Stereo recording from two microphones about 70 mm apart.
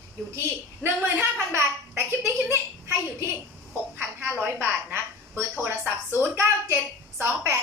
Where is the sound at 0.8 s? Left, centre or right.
Right.